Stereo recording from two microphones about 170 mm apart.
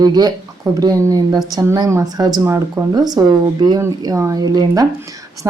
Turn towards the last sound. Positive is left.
turn(degrees=-20)  # may be behind; listen again after turning